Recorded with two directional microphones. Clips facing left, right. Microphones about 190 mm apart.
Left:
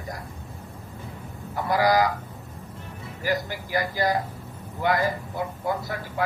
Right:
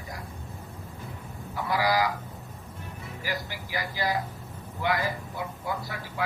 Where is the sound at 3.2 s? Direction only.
50° left (ahead or behind).